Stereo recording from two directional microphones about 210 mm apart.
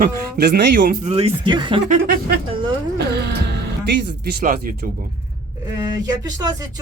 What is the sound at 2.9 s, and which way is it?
Music, 55° right (ahead or behind).